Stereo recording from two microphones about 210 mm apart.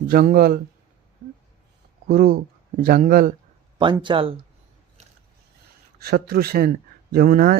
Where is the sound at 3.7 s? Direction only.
20° right (ahead or behind).